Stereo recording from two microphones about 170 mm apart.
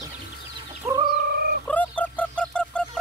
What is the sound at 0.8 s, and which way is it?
Chicken, 15° right (ahead or behind).